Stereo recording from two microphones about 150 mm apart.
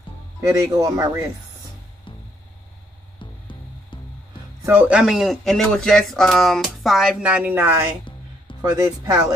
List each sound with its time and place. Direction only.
0.4 s speech: 20° right (ahead or behind)
2.1 s music: 35° left (ahead or behind)
4.6 s speech: 10° right (ahead or behind)
8.5 s speech: 25° right (ahead or behind)